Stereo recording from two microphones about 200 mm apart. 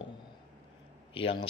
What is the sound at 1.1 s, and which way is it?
Speech, 25° left (ahead or behind).